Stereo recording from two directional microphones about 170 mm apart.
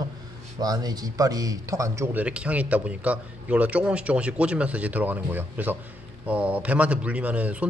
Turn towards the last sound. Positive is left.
turn(degrees=-10)  # may be behind; listen again after turning